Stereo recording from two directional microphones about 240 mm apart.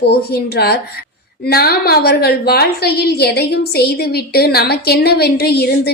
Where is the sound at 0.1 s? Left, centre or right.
Left.